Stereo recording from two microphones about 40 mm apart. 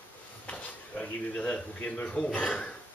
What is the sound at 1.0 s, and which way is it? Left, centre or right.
A man's voice, left.